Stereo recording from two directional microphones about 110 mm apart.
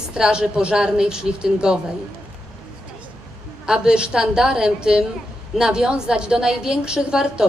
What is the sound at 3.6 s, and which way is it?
A woman's voice, 5° right (ahead or behind).